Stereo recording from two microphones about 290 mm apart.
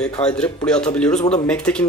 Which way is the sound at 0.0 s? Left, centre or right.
Centre.